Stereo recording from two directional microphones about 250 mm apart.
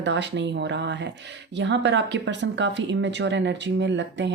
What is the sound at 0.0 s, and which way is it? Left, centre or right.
Speech, right.